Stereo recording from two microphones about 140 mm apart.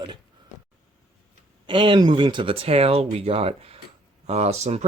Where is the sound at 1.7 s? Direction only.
35° right (ahead or behind).